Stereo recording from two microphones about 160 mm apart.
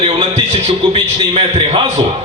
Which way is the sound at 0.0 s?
35° right (ahead or behind).